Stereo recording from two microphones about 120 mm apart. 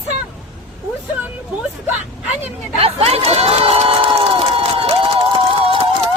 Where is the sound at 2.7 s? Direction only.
55° right (ahead or behind).